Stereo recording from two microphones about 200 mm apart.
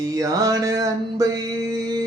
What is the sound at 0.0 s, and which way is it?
Mantra, 15° right (ahead or behind).